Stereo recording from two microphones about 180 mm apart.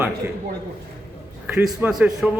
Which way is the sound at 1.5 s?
5° right (ahead or behind).